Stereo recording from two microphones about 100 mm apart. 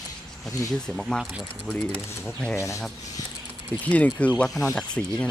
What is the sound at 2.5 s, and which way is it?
Speech, 30° left (ahead or behind).